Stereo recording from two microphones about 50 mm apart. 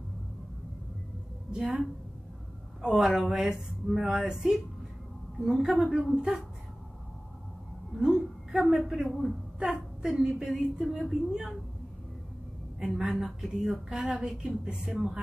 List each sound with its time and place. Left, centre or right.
1.5 s speech: centre
6.1 s speech: centre
8.0 s a sound: centre
9.0 s speech: centre
13.2 s speech: centre